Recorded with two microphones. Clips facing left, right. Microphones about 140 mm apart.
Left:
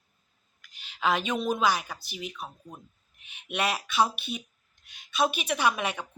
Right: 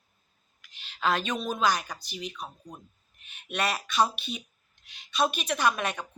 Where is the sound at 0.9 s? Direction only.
10° left (ahead or behind).